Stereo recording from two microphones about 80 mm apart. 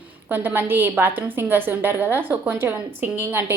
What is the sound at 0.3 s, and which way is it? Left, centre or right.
A woman's voice, right.